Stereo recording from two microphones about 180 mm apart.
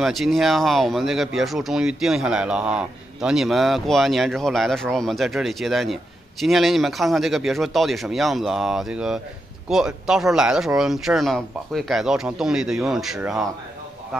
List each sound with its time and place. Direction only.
0.0 s speech: centre (ahead or behind)